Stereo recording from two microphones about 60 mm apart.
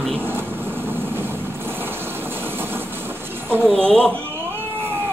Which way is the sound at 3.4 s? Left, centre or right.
Right.